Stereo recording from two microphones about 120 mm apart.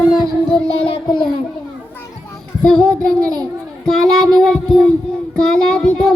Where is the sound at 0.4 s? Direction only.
40° left (ahead or behind).